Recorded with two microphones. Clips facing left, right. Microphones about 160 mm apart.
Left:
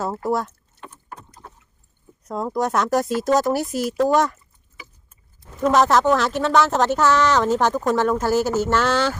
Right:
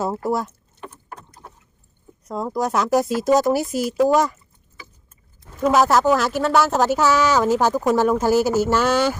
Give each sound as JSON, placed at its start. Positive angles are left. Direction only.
{"t": 0.0, "sound": "speech", "side_deg": -10}
{"t": 2.2, "sound": "speech", "side_deg": 0}
{"t": 5.6, "sound": "speech", "side_deg": -5}